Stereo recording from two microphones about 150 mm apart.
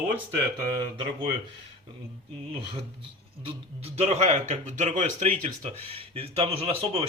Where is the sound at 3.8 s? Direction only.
45° right (ahead or behind).